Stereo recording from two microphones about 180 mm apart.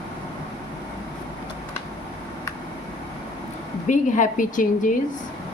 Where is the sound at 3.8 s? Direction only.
45° left (ahead or behind).